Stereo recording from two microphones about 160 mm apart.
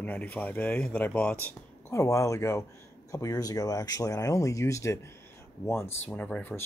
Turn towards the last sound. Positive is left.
turn(degrees=10)  # may be behind; listen again after turning